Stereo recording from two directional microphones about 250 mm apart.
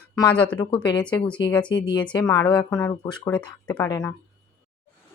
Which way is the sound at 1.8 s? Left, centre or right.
Centre.